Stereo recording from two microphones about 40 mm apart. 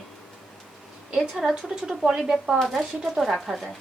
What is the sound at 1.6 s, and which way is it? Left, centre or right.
Speech, centre.